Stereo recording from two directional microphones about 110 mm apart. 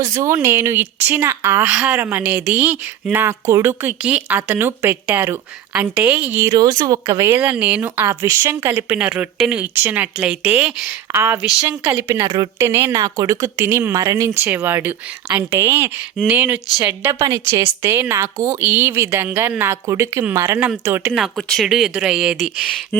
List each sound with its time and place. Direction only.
0.0 s speech: 25° right (ahead or behind)
1.6 s speech: 10° right (ahead or behind)
6.5 s speech: 30° right (ahead or behind); by 10.9 s 10° right (ahead or behind)
11.1 s speech: 20° right (ahead or behind)
13.0 s speech: 30° right (ahead or behind)
18.6 s speech: 15° right (ahead or behind)
20.6 s speech: 15° right (ahead or behind)
21.2 s speech: centre (ahead or behind)